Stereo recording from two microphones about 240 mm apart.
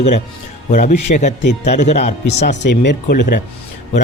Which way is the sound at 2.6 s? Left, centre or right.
Left.